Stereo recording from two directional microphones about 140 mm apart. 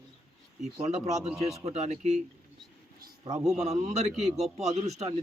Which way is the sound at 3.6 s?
55° right (ahead or behind).